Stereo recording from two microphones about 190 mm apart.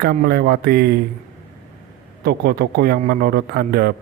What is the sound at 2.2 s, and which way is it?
A man's voice, 55° right (ahead or behind).